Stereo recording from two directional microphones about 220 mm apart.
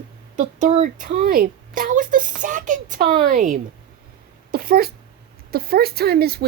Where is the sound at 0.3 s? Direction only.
35° right (ahead or behind).